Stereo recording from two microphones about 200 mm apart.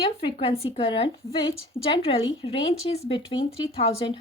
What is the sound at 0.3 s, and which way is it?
Speech, 30° left (ahead or behind).